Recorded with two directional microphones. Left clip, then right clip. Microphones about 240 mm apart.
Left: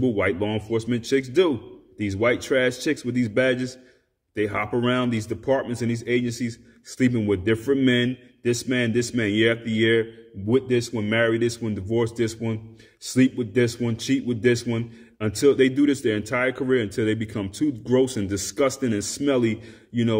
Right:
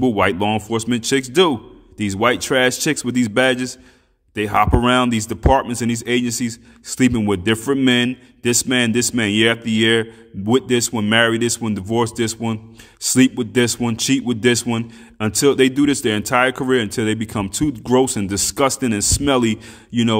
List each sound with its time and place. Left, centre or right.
0.0 s speech: right